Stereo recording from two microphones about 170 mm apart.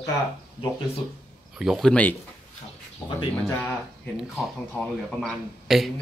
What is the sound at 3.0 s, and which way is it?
Speech, 20° left (ahead or behind).